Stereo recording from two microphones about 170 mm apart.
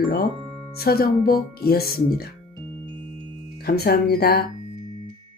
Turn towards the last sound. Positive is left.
turn(degrees=65)  # may be behind; listen again after turning